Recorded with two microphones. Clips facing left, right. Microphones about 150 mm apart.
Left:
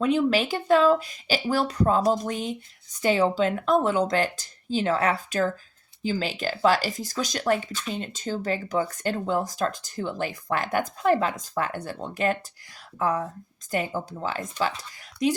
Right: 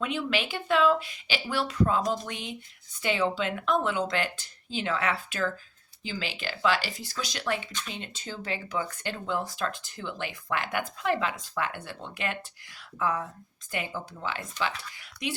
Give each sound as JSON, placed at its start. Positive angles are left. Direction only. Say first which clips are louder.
{"t": 0.0, "sound": "speech", "louder": "left 8 dB", "side_deg": 40}